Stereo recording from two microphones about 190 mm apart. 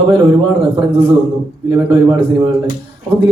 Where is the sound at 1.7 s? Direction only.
20° right (ahead or behind).